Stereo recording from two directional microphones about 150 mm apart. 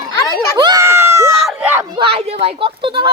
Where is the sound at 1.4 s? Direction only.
5° right (ahead or behind).